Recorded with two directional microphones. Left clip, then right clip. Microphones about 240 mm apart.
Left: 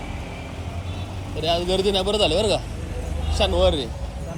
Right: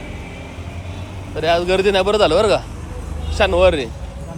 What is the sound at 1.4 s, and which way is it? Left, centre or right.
A man's voice, centre.